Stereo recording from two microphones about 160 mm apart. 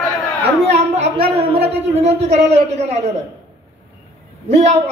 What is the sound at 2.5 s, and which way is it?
Speech, 45° right (ahead or behind).